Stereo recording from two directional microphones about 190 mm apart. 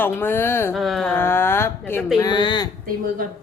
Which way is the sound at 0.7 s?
Centre (ahead or behind).